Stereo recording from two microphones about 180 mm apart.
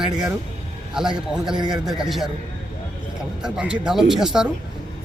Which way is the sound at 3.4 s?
5° right (ahead or behind).